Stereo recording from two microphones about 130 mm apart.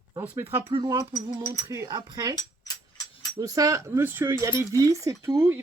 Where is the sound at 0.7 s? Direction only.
30° right (ahead or behind).